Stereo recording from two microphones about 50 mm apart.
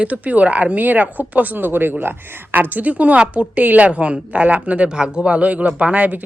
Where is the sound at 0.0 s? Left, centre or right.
Right.